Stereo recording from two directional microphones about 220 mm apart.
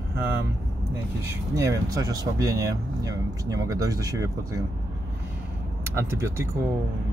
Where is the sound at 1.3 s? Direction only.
15° right (ahead or behind).